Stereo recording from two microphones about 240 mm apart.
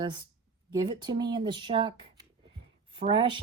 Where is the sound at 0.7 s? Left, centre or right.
Centre.